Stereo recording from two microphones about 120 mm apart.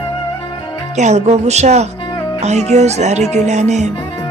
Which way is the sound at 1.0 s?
70° right (ahead or behind).